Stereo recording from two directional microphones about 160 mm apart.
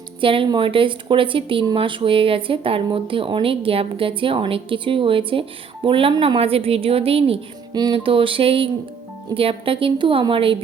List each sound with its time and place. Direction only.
0.2 s speech: 35° right (ahead or behind)